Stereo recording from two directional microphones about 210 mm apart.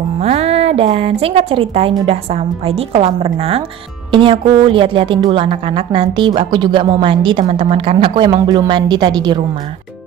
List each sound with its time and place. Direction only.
0.2 s a woman's voice: 30° right (ahead or behind)